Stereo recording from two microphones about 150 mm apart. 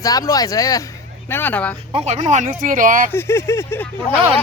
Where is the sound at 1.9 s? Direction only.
45° right (ahead or behind); by 3.1 s 60° right (ahead or behind).